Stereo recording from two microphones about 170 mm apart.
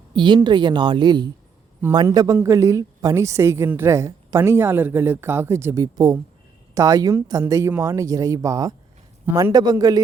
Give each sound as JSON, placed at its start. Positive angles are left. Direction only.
{"t": 0.4, "sound": "a woman's voice", "side_deg": -25}